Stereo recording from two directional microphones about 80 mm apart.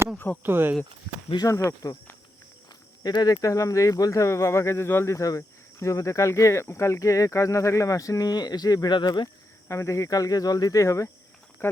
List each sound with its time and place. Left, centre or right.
0.4 s speech: right
1.8 s speech: left
3.0 s speech: left
9.6 s speech: left
11.6 s speech: left